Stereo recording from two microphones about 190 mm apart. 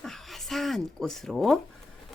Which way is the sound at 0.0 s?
Centre (ahead or behind).